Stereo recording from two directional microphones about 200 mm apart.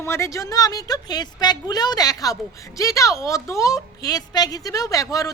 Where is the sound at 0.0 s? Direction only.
15° left (ahead or behind).